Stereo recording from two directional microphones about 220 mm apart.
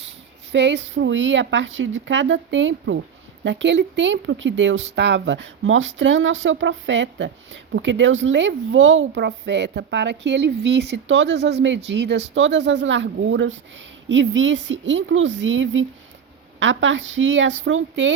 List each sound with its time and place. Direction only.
0.5 s speech: 55° right (ahead or behind)